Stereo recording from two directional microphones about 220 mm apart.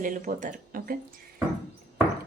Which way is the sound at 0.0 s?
35° right (ahead or behind).